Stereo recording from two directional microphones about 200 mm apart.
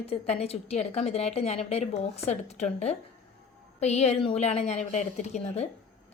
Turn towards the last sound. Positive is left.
turn(degrees=35)  # may be behind; listen again after turning